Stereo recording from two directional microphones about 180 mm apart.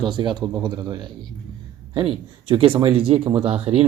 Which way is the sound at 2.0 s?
30° right (ahead or behind).